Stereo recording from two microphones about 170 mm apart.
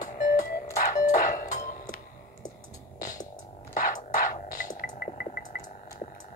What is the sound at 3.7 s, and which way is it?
Music, 50° left (ahead or behind).